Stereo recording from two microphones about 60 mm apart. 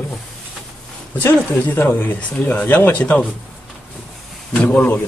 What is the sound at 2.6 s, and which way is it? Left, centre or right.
Speech, left.